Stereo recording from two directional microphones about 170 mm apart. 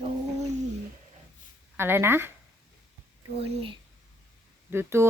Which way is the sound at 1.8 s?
15° right (ahead or behind).